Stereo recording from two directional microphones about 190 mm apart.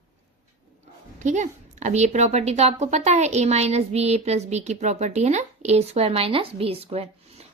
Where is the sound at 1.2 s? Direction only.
40° right (ahead or behind).